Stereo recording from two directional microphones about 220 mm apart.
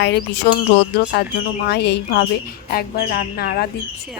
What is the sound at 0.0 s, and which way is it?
Speech, 50° left (ahead or behind).